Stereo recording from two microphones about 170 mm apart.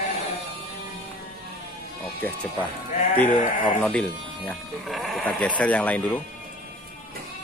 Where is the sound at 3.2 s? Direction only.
50° left (ahead or behind).